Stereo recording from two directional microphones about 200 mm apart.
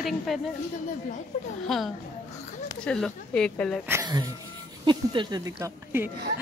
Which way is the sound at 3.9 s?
20° right (ahead or behind).